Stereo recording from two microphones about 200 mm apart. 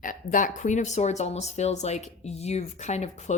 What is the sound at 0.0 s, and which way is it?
Speech, 40° left (ahead or behind).